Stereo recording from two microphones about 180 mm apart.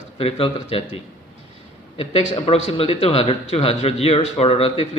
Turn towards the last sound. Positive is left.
turn(degrees=35)  # may be behind; listen again after turning